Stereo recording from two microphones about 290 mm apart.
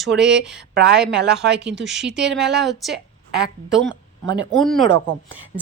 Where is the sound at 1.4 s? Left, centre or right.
Right.